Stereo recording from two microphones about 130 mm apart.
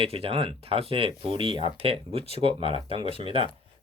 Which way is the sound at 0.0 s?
45° right (ahead or behind).